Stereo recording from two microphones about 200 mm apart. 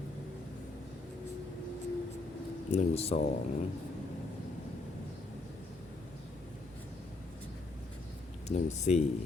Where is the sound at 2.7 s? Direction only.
30° left (ahead or behind).